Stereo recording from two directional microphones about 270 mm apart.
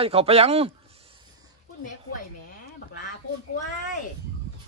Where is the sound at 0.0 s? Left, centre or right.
Right.